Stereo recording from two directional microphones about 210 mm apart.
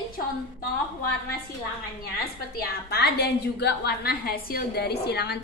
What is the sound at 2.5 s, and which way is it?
A woman's voice, 50° left (ahead or behind).